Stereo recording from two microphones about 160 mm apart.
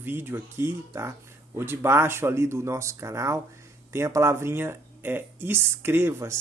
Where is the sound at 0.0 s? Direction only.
15° right (ahead or behind).